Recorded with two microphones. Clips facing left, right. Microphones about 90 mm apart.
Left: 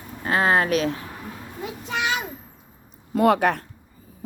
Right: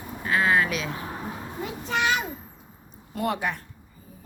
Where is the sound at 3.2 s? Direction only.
80° left.